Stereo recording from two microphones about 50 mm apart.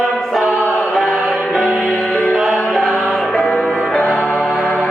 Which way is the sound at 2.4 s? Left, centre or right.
Centre.